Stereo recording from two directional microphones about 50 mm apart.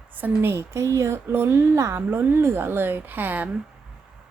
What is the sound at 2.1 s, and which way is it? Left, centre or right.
A woman's voice, right.